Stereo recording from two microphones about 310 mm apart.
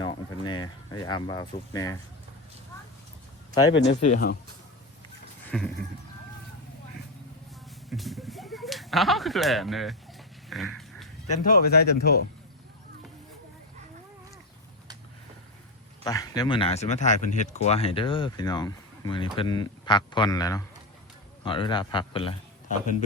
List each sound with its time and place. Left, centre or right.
0.0 s speech: centre
3.7 s speech: left
5.5 s a sound: centre
7.9 s a sound: centre
10.5 s dog: centre
11.3 s speech: left
16.0 s speech: centre